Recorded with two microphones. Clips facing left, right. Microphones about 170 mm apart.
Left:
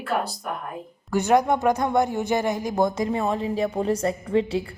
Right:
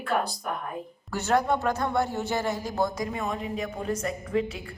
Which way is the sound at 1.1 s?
15° left (ahead or behind).